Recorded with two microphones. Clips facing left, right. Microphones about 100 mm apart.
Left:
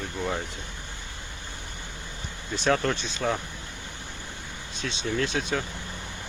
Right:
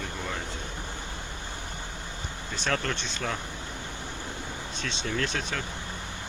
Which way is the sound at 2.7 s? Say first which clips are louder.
Left 5 dB; 10° left (ahead or behind).